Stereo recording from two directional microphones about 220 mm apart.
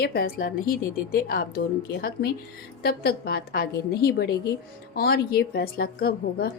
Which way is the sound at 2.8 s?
45° left (ahead or behind).